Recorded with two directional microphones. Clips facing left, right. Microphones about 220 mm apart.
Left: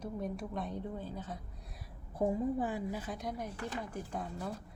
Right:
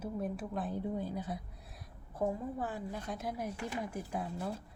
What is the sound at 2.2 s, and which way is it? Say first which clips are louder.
A woman's voice: left 3 dB; 15° left (ahead or behind).